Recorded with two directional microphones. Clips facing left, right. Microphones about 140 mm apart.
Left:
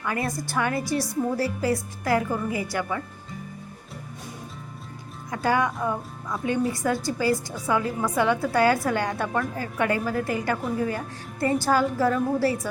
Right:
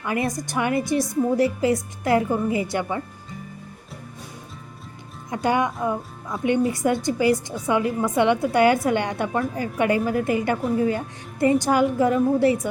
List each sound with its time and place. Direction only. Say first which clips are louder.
0.0 s a woman's voice: right 3 dB; 20° right (ahead or behind)
5.3 s a woman's voice: right 2 dB; 20° right (ahead or behind)